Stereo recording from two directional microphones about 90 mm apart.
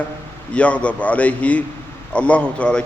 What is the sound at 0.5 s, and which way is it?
A man's voice, 15° left (ahead or behind).